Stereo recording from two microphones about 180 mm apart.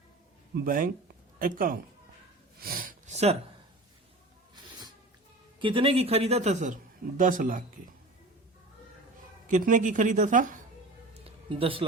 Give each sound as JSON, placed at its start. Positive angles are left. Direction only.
{"t": 0.5, "sound": "speech", "side_deg": -50}
{"t": 2.6, "sound": "snort", "side_deg": -55}
{"t": 5.5, "sound": "a man's voice", "side_deg": -30}
{"t": 9.5, "sound": "speech", "side_deg": -45}
{"t": 11.1, "sound": "music", "side_deg": -30}